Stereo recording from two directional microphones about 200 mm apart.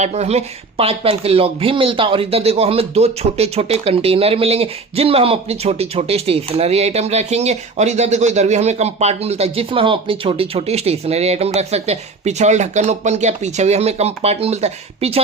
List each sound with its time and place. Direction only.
0.0 s speech: 35° right (ahead or behind)